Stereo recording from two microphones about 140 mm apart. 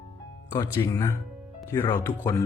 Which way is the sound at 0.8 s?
25° left (ahead or behind).